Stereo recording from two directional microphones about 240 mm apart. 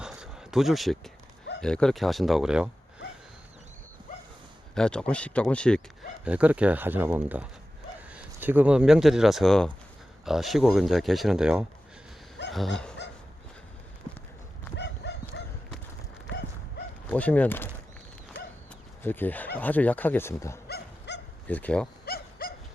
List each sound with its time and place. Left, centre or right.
0.0 s a sound: centre
1.6 s speech: centre
4.7 s speech: centre
12.5 s dog: centre
14.8 s livestock: left
15.3 s a sound: left
17.1 s speech: centre
19.0 s speech: centre
20.7 s dog: left
21.4 s speech: centre
22.0 s dog: left